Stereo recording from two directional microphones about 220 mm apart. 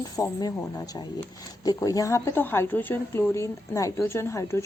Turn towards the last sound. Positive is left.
turn(degrees=10)  # may be behind; listen again after turning